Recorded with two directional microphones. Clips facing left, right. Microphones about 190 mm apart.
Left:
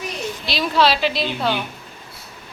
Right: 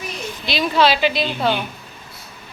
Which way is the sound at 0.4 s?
Centre (ahead or behind).